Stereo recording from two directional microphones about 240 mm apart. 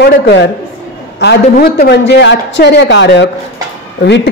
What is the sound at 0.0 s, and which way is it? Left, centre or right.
A man's voice, left.